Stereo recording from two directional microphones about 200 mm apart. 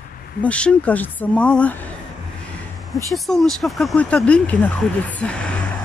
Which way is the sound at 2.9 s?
Centre (ahead or behind).